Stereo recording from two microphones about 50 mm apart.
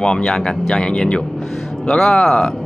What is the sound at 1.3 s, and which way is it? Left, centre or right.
Music, centre.